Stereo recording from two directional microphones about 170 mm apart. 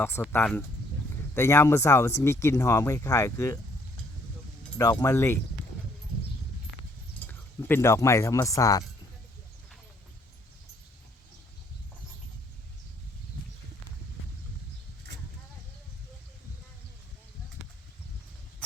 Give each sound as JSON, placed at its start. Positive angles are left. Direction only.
{"t": 0.3, "sound": "speech", "side_deg": 10}
{"t": 4.8, "sound": "speech", "side_deg": 20}
{"t": 7.3, "sound": "speech", "side_deg": 15}